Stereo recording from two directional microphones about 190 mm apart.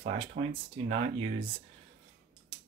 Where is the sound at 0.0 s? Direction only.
30° right (ahead or behind).